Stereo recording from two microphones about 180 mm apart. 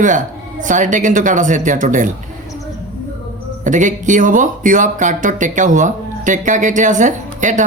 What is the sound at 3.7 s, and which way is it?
A man's voice, 45° right (ahead or behind).